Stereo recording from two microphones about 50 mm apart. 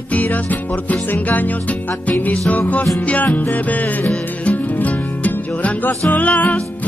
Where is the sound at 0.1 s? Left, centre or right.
Left.